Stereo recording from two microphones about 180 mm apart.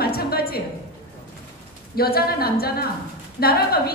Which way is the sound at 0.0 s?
60° left (ahead or behind).